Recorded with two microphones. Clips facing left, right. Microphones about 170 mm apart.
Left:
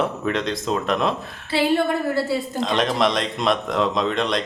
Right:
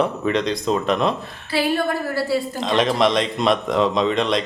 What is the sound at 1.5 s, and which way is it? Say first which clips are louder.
Speech: left 1 dB; 25° left (ahead or behind).